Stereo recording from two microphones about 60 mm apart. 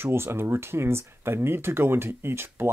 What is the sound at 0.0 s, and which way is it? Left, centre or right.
Speech, right.